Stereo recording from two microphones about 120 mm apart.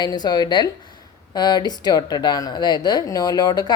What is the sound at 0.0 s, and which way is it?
Speech, 35° left (ahead or behind).